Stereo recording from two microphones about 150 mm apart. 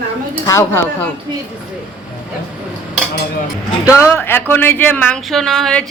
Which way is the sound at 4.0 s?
15° left (ahead or behind).